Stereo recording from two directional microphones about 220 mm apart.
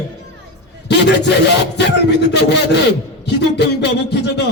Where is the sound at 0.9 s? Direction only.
50° left (ahead or behind).